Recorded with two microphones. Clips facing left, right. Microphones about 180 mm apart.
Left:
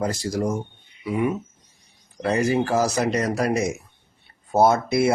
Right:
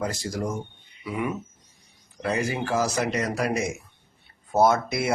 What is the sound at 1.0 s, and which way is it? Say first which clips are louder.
Speech: left 5 dB; 25° left (ahead or behind).